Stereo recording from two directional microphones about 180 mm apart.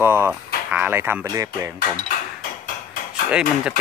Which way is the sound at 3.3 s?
5° right (ahead or behind).